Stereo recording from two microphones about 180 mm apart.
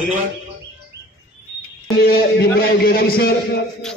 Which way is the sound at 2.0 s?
60° left (ahead or behind).